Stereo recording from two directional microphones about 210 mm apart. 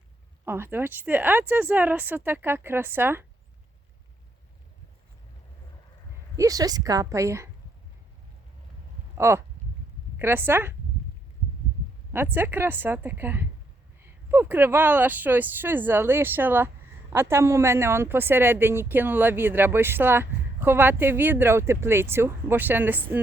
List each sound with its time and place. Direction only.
0.4 s speech: 10° right (ahead or behind)
6.3 s speech: 15° right (ahead or behind)
9.1 s speech: 10° right (ahead or behind)
12.1 s speech: 10° right (ahead or behind)